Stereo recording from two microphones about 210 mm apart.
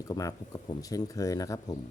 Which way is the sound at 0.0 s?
15° left (ahead or behind).